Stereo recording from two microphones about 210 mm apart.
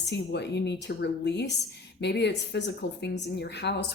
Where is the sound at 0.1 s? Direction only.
55° left (ahead or behind).